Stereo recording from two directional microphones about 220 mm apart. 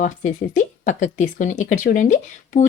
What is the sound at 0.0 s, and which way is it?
Speech, 35° left (ahead or behind).